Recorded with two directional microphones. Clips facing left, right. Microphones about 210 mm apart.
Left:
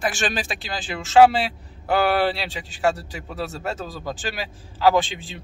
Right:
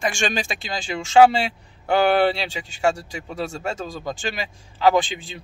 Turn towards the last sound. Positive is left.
turn(degrees=0)  # may be behind; listen again after turning